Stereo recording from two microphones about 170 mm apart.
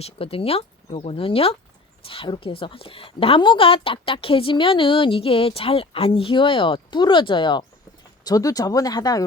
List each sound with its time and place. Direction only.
0.0 s a woman's voice: 35° left (ahead or behind)